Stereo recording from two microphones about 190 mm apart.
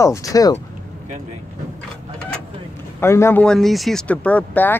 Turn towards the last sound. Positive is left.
turn(degrees=10)  # may be behind; listen again after turning